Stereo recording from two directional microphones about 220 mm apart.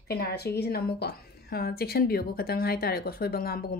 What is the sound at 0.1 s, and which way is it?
A woman's voice, 45° left (ahead or behind).